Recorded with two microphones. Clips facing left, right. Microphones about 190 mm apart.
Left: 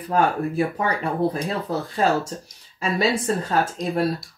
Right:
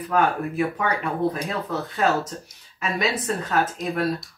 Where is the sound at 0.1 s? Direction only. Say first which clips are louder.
Left 2 dB; 35° left (ahead or behind).